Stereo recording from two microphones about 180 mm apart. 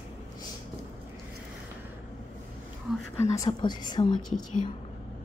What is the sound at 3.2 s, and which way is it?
A woman's voice, 15° left (ahead or behind).